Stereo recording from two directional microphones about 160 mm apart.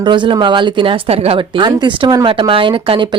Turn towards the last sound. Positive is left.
turn(degrees=-30)  # may be behind; listen again after turning